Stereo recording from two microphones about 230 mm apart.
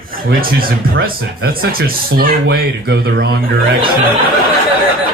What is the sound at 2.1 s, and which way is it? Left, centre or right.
Speech, right.